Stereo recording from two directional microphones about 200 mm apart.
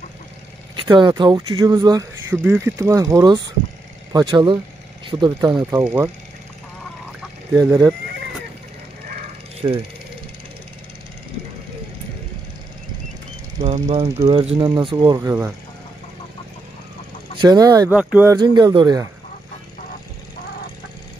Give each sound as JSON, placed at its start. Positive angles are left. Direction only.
{"t": 0.7, "sound": "speech", "side_deg": -20}
{"t": 7.5, "sound": "speech", "side_deg": -15}
{"t": 9.6, "sound": "speech", "side_deg": -20}
{"t": 13.7, "sound": "speech", "side_deg": -35}
{"t": 17.4, "sound": "speech", "side_deg": -20}
{"t": 17.9, "sound": "speech", "side_deg": -5}
{"t": 18.3, "sound": "speech", "side_deg": -20}